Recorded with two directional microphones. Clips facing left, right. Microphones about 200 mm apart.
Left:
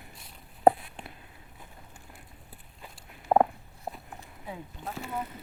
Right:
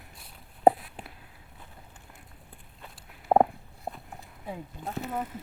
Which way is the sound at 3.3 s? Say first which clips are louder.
Right 1 dB; 20° right (ahead or behind).